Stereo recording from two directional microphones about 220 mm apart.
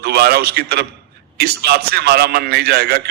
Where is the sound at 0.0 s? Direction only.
45° right (ahead or behind).